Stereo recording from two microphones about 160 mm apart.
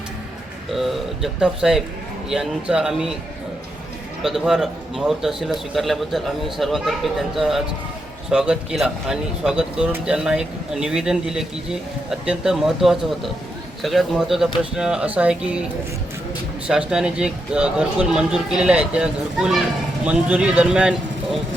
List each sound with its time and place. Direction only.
0.7 s speech: centre (ahead or behind)
4.2 s speech: centre (ahead or behind)
16.6 s speech: 5° right (ahead or behind)